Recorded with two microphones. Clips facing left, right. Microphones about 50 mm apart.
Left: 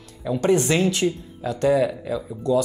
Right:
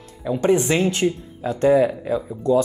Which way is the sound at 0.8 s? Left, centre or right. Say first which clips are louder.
Right 1 dB; right.